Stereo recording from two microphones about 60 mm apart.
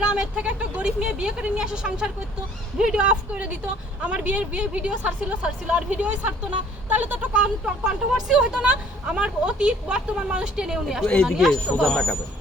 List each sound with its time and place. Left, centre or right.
0.0 s speech: centre
11.0 s speech: left
11.3 s speech: centre
11.8 s speech: centre